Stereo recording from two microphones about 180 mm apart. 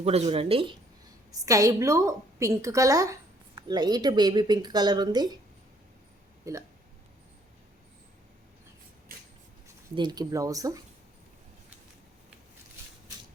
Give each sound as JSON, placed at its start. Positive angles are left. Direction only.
{"t": 0.0, "sound": "speech", "side_deg": -35}
{"t": 1.3, "sound": "a woman's voice", "side_deg": -20}
{"t": 6.5, "sound": "speech", "side_deg": -15}
{"t": 9.9, "sound": "a woman's voice", "side_deg": -25}